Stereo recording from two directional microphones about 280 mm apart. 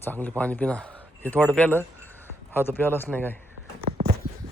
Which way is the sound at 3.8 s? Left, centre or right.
Right.